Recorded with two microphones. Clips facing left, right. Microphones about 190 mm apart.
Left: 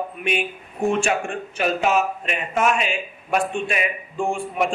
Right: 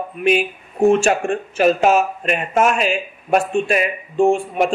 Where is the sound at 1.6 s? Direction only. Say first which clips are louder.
Right 6 dB; 45° right (ahead or behind).